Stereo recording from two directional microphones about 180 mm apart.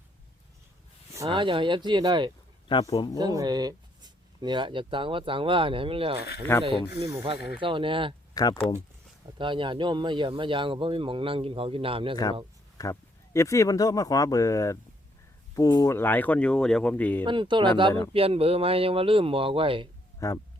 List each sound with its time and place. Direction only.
1.2 s speech: 25° right (ahead or behind)
2.6 s speech: 25° left (ahead or behind)
3.2 s speech: 20° right (ahead or behind)
6.5 s speech: 15° left (ahead or behind)
7.2 s speech: 30° right (ahead or behind)
8.3 s a sound: 20° left (ahead or behind)
9.4 s speech: 30° right (ahead or behind)
12.1 s speech: 20° left (ahead or behind)
17.2 s speech: 25° right (ahead or behind)
20.1 s speech: 20° left (ahead or behind)